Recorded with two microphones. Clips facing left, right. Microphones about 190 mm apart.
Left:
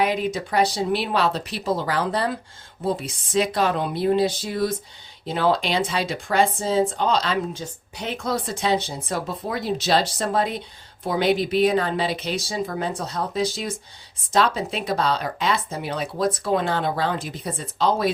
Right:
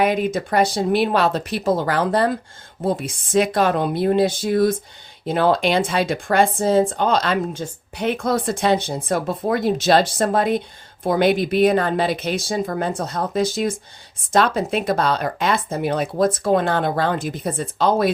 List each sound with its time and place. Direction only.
0.0 s speech: 50° right (ahead or behind)